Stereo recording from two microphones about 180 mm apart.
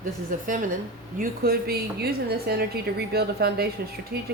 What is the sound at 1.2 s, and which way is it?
A woman's voice, 60° right (ahead or behind).